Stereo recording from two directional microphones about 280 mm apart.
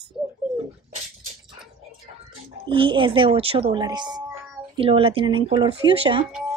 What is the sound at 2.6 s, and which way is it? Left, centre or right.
Speech, centre.